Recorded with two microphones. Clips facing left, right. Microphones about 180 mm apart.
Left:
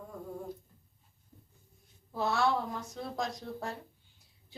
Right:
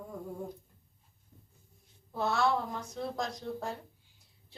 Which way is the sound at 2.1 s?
Centre (ahead or behind).